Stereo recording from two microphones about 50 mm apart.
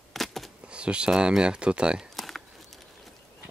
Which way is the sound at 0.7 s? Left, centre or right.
Right.